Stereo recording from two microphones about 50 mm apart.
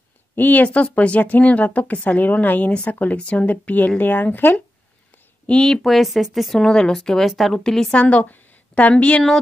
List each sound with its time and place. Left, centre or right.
0.4 s speech: left
5.5 s speech: centre
5.8 s speech: centre
6.6 s speech: centre
7.0 s speech: centre
7.9 s a woman's voice: left